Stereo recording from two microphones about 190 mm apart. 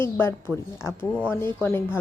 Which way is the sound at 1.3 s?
15° left (ahead or behind).